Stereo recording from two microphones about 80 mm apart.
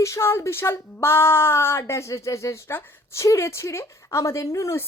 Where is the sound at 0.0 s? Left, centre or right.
Left.